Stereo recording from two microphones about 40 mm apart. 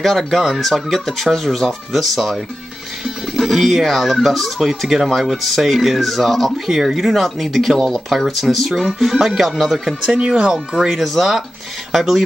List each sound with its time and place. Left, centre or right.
0.0 s speech: centre
3.3 s speech: centre
6.7 s speech: centre
10.0 s speech: right; by 12.2 s centre